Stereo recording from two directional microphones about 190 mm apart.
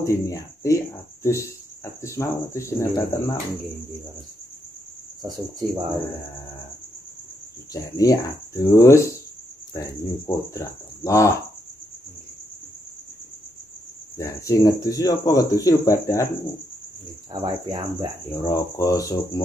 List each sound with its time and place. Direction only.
0.0 s speech: 15° left (ahead or behind)
5.2 s cricket: 20° right (ahead or behind)
7.7 s speech: 20° left (ahead or behind)
14.1 s speech: 15° left (ahead or behind)
17.3 s cricket: 20° right (ahead or behind)
18.3 s speech: 15° left (ahead or behind)